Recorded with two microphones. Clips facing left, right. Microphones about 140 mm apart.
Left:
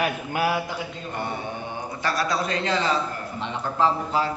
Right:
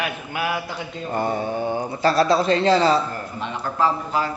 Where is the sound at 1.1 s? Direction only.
35° right (ahead or behind).